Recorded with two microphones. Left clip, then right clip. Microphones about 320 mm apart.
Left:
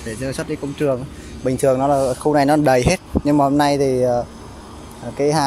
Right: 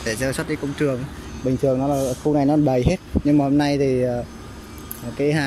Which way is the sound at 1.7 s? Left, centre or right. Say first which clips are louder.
Left 6 dB; left.